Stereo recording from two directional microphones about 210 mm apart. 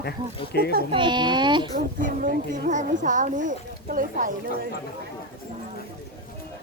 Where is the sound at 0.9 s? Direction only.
20° right (ahead or behind).